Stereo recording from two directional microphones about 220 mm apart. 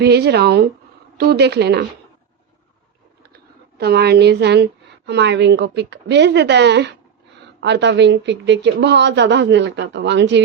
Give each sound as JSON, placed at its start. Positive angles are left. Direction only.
{"t": 0.0, "sound": "speech", "side_deg": -50}
{"t": 3.3, "sound": "a woman's voice", "side_deg": -45}